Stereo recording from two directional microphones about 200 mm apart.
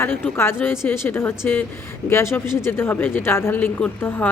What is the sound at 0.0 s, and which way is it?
A woman's voice, 10° left (ahead or behind).